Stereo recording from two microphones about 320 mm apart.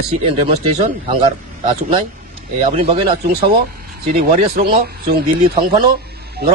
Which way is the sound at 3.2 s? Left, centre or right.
Right.